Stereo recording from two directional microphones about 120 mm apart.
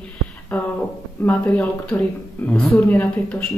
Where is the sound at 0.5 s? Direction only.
10° left (ahead or behind).